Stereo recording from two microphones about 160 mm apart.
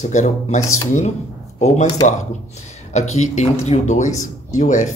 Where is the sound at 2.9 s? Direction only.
45° left (ahead or behind).